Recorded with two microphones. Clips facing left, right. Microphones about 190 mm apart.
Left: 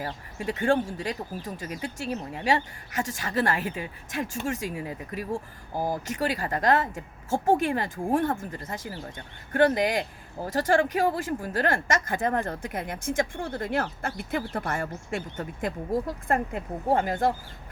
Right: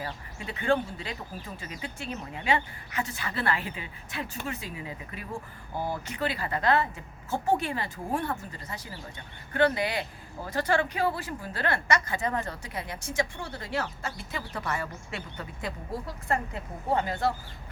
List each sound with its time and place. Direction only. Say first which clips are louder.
0.0 s speech: left 6 dB; 45° left (ahead or behind)